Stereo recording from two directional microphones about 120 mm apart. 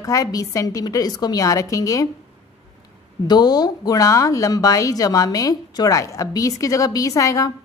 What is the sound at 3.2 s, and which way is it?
A woman's voice, 35° left (ahead or behind).